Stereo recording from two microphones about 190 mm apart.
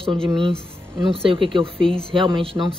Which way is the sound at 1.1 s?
30° right (ahead or behind).